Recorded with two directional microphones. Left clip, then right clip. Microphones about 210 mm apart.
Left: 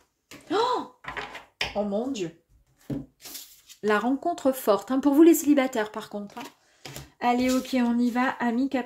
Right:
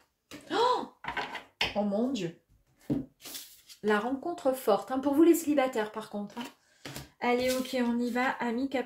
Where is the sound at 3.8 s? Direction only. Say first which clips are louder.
Left 5 dB; 50° left (ahead or behind).